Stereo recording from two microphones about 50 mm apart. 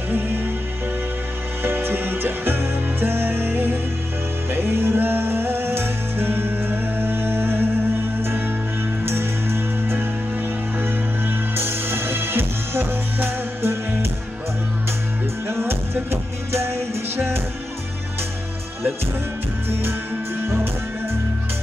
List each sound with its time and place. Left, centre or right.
1.6 s music: right
15.4 s music: right